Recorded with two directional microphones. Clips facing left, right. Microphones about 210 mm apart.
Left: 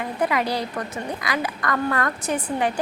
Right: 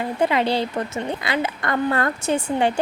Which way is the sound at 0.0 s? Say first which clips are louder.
Right 3 dB; 25° right (ahead or behind).